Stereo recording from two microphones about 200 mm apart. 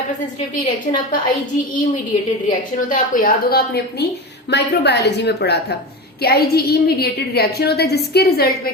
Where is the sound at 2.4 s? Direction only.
45° left (ahead or behind).